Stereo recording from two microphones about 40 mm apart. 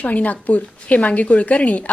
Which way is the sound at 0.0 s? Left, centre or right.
Left.